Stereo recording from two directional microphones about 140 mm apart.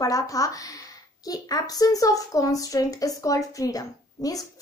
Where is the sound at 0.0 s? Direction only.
25° left (ahead or behind).